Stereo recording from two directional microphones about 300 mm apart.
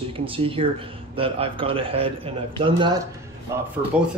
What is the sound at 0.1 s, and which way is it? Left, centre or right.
Speech, centre.